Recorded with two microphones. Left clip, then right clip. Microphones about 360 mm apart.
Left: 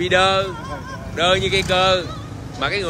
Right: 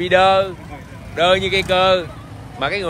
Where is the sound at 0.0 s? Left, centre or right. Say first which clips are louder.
Right 3 dB; centre.